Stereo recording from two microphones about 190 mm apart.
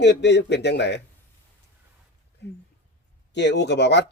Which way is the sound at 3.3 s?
65° left (ahead or behind).